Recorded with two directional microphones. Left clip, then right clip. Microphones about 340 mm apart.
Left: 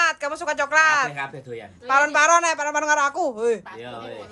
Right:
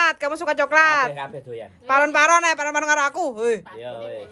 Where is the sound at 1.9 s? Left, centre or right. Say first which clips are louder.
Right 1 dB; centre.